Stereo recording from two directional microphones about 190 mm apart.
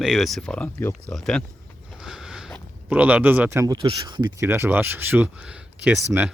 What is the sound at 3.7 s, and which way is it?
Speech, 25° right (ahead or behind).